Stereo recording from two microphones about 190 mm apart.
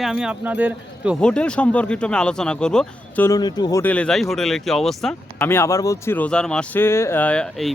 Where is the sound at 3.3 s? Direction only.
20° left (ahead or behind).